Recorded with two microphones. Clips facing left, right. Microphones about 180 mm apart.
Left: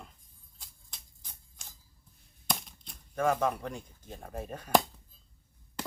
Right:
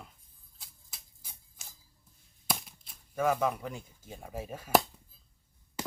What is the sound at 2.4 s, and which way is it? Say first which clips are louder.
Speech: even; 5° right (ahead or behind).